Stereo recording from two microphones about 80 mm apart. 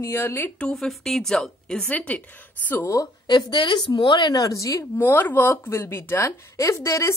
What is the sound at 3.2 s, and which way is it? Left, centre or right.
Speech, left.